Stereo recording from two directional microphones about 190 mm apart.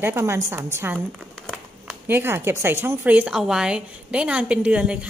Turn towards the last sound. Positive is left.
turn(degrees=-5)  # may be behind; listen again after turning